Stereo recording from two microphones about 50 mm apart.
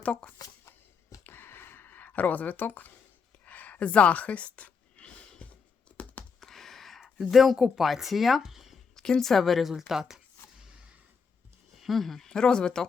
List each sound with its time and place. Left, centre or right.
0.0 s speech: left
1.2 s a sound: left
6.0 s computer keyboard: left
6.4 s gasp: centre
7.3 s speech: centre
9.0 s speech: centre
10.6 s a sound: centre
11.8 s speech: centre
12.3 s speech: centre